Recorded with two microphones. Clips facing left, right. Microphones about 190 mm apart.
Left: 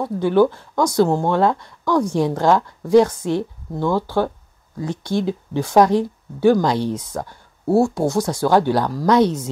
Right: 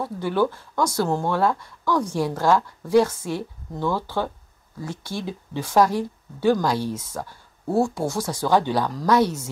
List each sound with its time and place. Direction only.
0.0 s speech: 15° left (ahead or behind)